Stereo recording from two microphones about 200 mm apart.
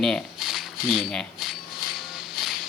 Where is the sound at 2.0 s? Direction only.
Centre (ahead or behind).